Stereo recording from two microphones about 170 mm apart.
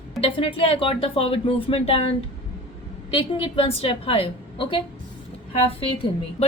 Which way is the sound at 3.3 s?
30° left (ahead or behind).